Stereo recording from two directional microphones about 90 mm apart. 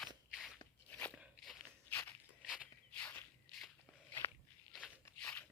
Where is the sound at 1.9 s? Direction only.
25° left (ahead or behind).